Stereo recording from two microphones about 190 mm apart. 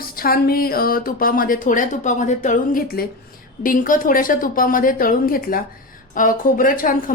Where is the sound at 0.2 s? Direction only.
50° left (ahead or behind).